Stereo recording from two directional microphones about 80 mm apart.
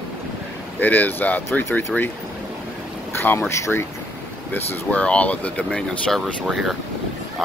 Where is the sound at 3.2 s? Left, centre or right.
Left.